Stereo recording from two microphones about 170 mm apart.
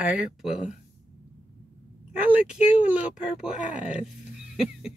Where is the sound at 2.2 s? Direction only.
10° right (ahead or behind).